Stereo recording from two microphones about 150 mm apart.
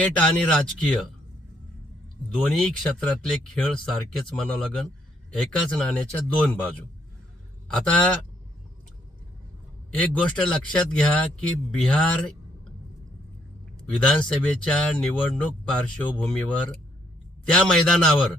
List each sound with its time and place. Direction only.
0.0 s speech: 5° left (ahead or behind)
2.5 s speech: 5° left (ahead or behind)
7.7 s speech: 5° left (ahead or behind)
10.0 s speech: 5° left (ahead or behind)
13.7 s speech: 5° left (ahead or behind)